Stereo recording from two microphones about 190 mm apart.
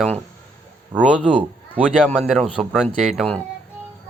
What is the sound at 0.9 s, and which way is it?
Speech, 5° right (ahead or behind).